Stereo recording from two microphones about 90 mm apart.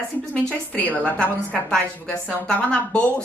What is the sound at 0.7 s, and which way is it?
A woman's voice, 15° left (ahead or behind).